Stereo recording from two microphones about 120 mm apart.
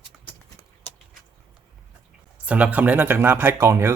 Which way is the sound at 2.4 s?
10° right (ahead or behind).